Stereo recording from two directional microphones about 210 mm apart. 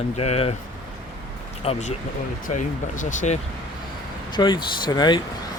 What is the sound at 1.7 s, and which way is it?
Speech, 25° left (ahead or behind).